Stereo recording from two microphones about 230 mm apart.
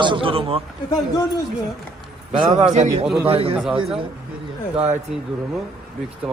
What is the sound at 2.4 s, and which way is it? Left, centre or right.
Speech, right.